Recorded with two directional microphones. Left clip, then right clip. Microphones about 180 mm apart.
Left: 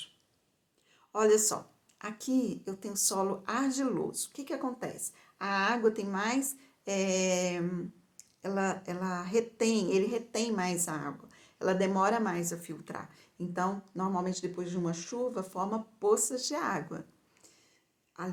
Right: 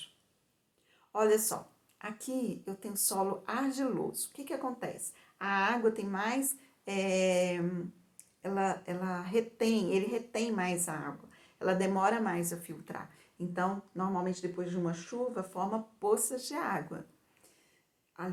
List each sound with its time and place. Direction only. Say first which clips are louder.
1.1 s a woman's voice: left 2 dB; 35° left (ahead or behind)
13.9 s speech: left 1 dB; 50° left (ahead or behind)
15.5 s a woman's voice: left 1 dB; 35° left (ahead or behind)